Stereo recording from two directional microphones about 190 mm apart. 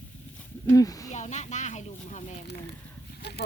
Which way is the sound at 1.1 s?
40° left (ahead or behind).